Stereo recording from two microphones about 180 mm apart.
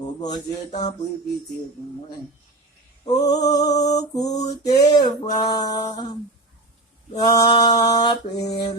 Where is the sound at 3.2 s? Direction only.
20° left (ahead or behind).